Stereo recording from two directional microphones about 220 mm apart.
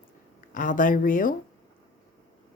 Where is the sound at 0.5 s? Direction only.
35° left (ahead or behind).